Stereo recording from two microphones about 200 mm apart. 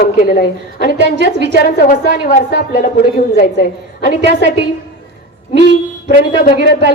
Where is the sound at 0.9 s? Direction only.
60° right (ahead or behind).